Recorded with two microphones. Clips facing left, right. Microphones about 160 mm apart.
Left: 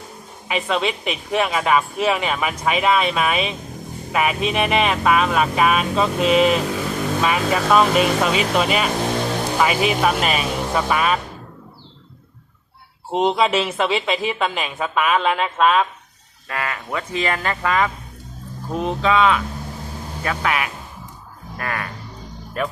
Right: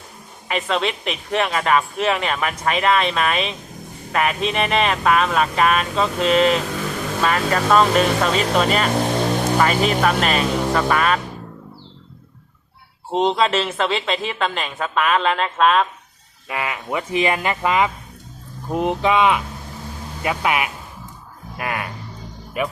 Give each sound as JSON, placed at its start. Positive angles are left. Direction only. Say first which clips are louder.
{"t": 0.4, "sound": "speech", "louder": "even", "side_deg": 5}
{"t": 13.1, "sound": "speech", "louder": "even", "side_deg": 5}
{"t": 16.5, "sound": "speech", "louder": "right 1 dB", "side_deg": -15}